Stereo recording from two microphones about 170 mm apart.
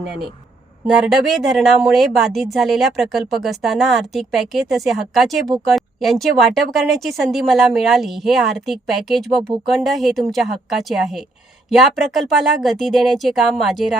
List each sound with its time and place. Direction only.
0.9 s speech: 5° right (ahead or behind)